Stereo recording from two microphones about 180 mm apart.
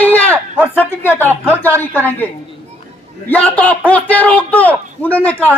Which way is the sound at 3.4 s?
10° left (ahead or behind).